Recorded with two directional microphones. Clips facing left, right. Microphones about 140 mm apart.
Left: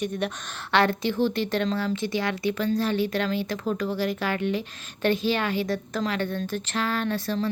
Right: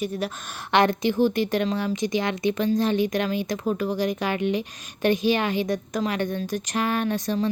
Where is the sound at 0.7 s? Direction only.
15° right (ahead or behind).